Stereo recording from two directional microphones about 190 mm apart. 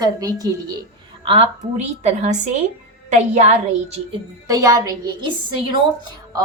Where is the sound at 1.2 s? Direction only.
30° right (ahead or behind).